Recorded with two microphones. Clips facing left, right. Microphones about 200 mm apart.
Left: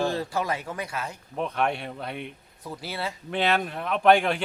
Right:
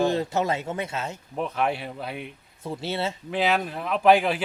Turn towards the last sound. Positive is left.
turn(degrees=-5)  # may be behind; listen again after turning